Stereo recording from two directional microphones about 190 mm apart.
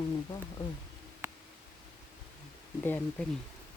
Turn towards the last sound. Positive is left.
turn(degrees=10)  # may be behind; listen again after turning